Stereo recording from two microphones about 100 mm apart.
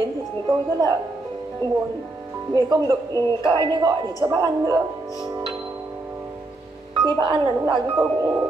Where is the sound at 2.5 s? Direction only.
45° right (ahead or behind).